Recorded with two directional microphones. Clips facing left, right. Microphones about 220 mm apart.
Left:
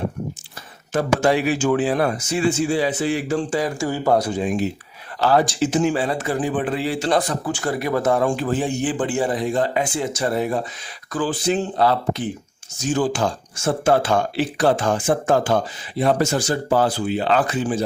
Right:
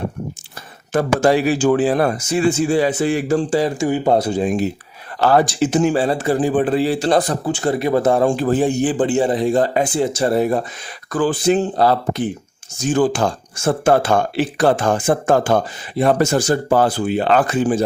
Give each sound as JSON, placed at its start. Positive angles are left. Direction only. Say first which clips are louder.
{"t": 0.9, "sound": "a man's voice", "louder": "right 3 dB", "side_deg": -40}
{"t": 3.8, "sound": "speech", "louder": "right 3 dB", "side_deg": -20}
{"t": 5.2, "sound": "a man's voice", "louder": "right 3 dB", "side_deg": -55}
{"t": 9.0, "sound": "a man's voice", "louder": "right 5 dB", "side_deg": -25}